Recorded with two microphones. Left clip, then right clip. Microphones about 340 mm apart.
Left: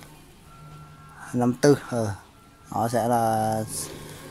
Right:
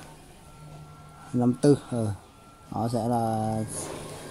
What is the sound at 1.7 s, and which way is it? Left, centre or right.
Speech, left.